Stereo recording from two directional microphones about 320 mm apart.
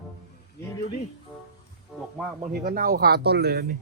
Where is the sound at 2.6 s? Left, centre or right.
Right.